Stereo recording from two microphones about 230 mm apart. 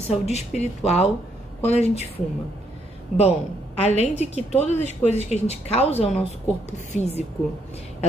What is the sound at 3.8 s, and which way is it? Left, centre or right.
A woman's voice, left.